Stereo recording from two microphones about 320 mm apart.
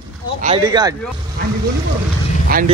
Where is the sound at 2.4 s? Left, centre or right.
Right.